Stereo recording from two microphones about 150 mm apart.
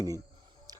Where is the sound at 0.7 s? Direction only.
25° right (ahead or behind).